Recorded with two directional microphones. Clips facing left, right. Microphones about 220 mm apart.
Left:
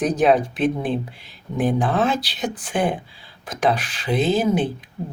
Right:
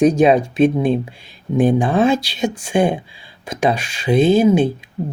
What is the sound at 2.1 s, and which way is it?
Speech, 25° right (ahead or behind).